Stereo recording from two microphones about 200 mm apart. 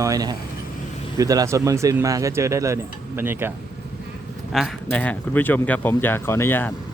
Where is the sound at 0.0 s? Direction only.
20° right (ahead or behind).